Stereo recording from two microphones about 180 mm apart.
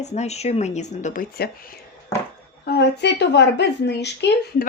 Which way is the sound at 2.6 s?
65° left (ahead or behind).